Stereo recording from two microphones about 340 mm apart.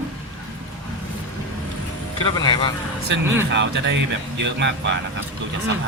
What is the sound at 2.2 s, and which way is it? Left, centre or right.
Vehicle, centre.